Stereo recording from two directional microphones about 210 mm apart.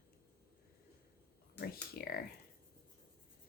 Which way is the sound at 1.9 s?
45° left (ahead or behind).